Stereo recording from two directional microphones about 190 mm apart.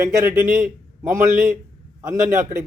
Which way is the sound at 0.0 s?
15° right (ahead or behind).